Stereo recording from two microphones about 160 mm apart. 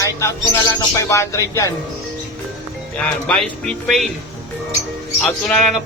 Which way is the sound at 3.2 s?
5° left (ahead or behind).